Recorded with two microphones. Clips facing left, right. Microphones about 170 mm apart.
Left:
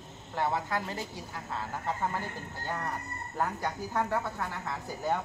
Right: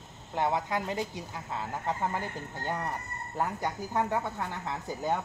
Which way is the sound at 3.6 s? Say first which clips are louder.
Right 1 dB; 15° right (ahead or behind).